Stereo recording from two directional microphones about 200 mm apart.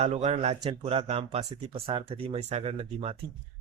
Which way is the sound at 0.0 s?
30° right (ahead or behind).